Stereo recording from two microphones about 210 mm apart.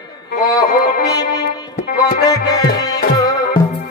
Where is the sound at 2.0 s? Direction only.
15° left (ahead or behind).